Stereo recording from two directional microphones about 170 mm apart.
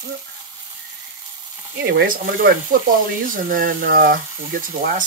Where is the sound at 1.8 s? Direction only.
55° right (ahead or behind).